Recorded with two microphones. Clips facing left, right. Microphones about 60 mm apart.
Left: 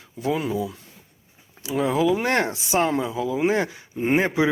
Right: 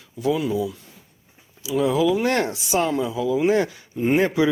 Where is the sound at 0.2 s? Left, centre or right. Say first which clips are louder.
Right 2 dB; left.